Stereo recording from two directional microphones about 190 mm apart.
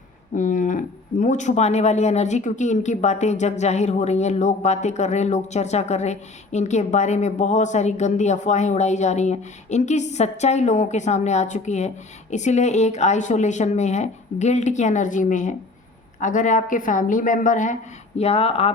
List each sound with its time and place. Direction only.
0.3 s a woman's voice: 40° left (ahead or behind)
18.2 s speech: 30° left (ahead or behind)